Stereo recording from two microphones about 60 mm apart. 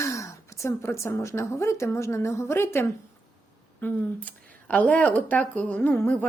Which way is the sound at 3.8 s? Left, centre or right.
Left.